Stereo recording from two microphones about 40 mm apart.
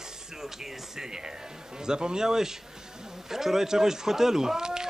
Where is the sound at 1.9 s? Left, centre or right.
Centre.